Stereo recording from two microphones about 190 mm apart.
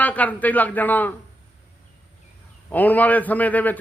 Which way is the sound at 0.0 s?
10° left (ahead or behind).